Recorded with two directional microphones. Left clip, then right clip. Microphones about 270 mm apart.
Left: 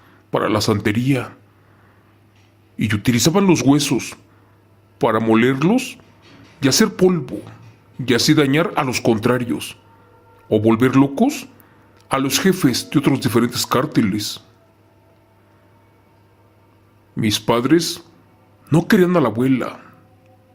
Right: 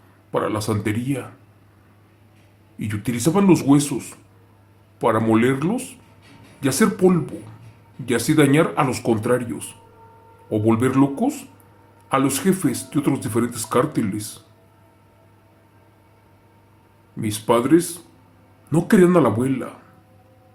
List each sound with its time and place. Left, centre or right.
0.3 s speech: left
2.7 s speech: left
17.2 s speech: left